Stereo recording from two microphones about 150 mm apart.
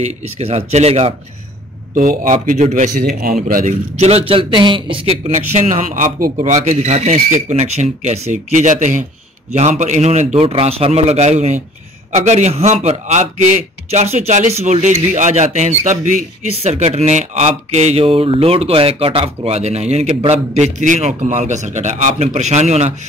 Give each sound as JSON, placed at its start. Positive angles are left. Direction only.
{"t": 0.0, "sound": "speech", "side_deg": -45}
{"t": 2.0, "sound": "speech", "side_deg": -60}
{"t": 3.0, "sound": "a man's voice", "side_deg": -80}
{"t": 4.0, "sound": "a man's voice", "side_deg": -40}
{"t": 5.5, "sound": "speech", "side_deg": -55}